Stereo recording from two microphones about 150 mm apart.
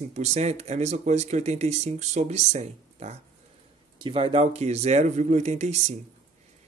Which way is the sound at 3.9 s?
35° right (ahead or behind).